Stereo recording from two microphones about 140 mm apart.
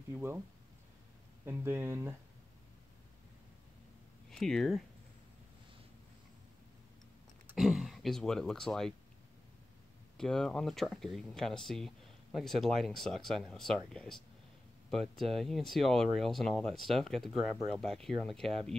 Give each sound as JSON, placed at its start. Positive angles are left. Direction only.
{"t": 0.1, "sound": "speech", "side_deg": -15}
{"t": 1.4, "sound": "speech", "side_deg": -15}
{"t": 4.3, "sound": "speech", "side_deg": 5}
{"t": 7.5, "sound": "speech", "side_deg": 0}
{"t": 10.1, "sound": "speech", "side_deg": 5}